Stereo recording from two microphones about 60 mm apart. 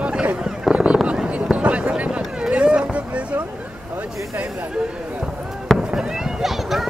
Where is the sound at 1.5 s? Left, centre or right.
Right.